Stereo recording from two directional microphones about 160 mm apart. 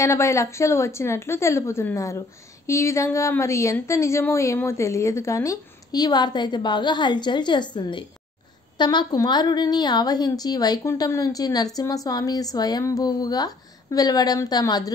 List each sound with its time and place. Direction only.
0.0 s a woman's voice: 20° left (ahead or behind)